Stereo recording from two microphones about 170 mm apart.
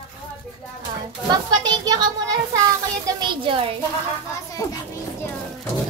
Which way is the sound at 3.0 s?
25° right (ahead or behind).